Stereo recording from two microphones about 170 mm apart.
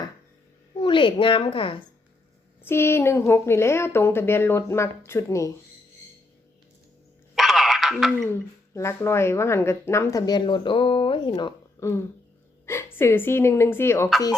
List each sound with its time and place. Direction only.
0.8 s speech: 30° left (ahead or behind)
2.6 s speech: 15° left (ahead or behind)
7.3 s a sound: centre (ahead or behind)
8.2 s speech: 15° left (ahead or behind)